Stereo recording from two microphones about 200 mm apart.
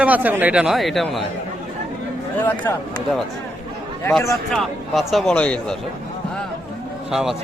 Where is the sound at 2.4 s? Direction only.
10° left (ahead or behind).